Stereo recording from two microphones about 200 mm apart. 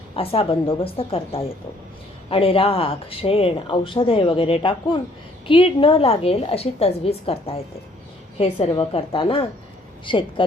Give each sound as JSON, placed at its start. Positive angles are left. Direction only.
{"t": 0.2, "sound": "speech", "side_deg": 30}